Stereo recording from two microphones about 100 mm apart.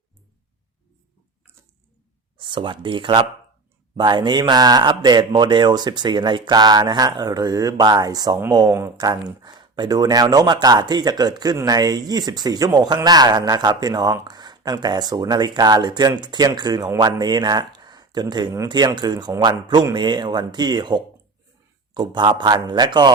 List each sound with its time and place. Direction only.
2.5 s speech: 55° right (ahead or behind)